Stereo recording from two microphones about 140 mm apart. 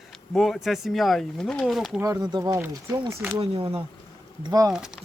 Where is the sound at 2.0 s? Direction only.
25° right (ahead or behind).